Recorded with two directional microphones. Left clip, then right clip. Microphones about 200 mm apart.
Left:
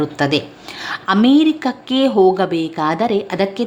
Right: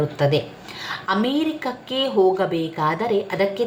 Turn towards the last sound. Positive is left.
turn(degrees=40)  # may be behind; listen again after turning